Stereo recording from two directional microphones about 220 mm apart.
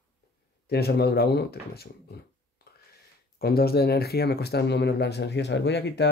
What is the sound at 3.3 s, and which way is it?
Speech, 45° left (ahead or behind).